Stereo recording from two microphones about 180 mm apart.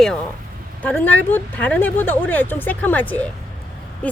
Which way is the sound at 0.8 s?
10° left (ahead or behind).